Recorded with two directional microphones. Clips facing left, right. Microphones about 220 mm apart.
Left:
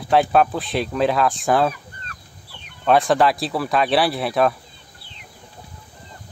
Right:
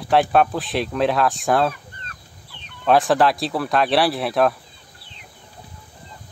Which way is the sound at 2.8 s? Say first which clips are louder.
Even; centre (ahead or behind).